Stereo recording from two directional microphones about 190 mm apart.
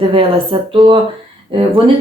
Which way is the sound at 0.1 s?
30° right (ahead or behind).